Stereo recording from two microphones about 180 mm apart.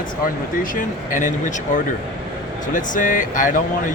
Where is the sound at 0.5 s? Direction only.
50° left (ahead or behind).